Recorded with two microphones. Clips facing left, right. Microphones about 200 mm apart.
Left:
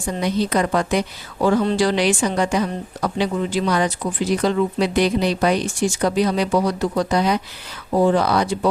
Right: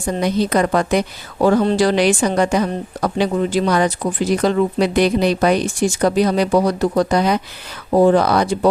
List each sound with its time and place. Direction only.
0.0 s speech: 40° right (ahead or behind)
1.4 s speech: 45° right (ahead or behind)
4.3 s speech: 55° right (ahead or behind)